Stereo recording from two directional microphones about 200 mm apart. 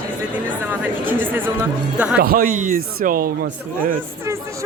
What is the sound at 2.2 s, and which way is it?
Speech, 45° right (ahead or behind).